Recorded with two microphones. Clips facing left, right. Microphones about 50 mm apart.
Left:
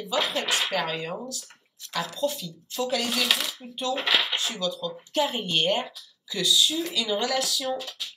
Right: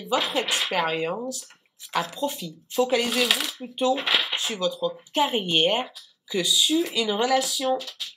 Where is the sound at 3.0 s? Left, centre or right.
Centre.